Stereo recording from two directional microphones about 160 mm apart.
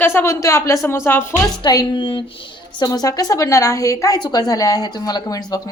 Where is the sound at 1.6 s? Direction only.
25° left (ahead or behind).